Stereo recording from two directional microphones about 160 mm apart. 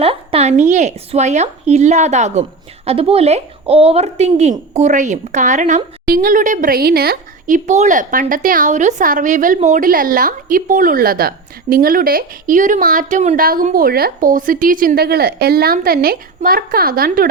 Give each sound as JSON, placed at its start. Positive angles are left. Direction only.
{"t": 0.0, "sound": "a woman's voice", "side_deg": -35}